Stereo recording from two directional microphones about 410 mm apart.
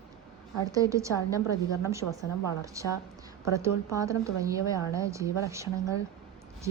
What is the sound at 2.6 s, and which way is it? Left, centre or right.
A woman's voice, centre.